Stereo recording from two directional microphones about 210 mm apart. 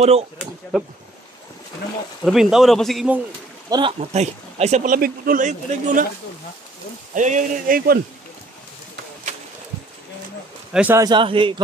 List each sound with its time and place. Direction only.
0.7 s speech: centre (ahead or behind)
2.2 s speech: centre (ahead or behind)
3.7 s speech: 25° right (ahead or behind)
7.2 s speech: 35° right (ahead or behind)
10.7 s speech: 10° right (ahead or behind)
11.1 s a man's voice: 25° right (ahead or behind)